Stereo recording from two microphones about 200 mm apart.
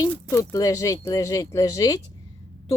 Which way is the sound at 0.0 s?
15° left (ahead or behind).